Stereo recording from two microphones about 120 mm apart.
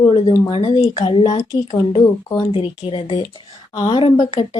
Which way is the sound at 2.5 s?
50° left (ahead or behind).